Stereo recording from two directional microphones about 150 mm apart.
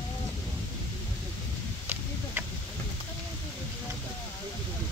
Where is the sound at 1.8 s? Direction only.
15° right (ahead or behind).